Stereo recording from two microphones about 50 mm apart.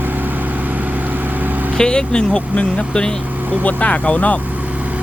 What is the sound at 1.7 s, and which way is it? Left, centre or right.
Speech, centre.